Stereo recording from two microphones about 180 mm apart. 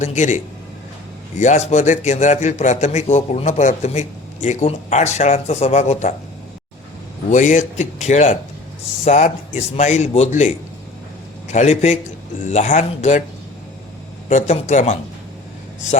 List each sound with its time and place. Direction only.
0.0 s a man's voice: 40° left (ahead or behind)
1.4 s a man's voice: 40° left (ahead or behind)
7.3 s a man's voice: 45° left (ahead or behind)
11.5 s a man's voice: 40° left (ahead or behind)
14.3 s a man's voice: 40° left (ahead or behind)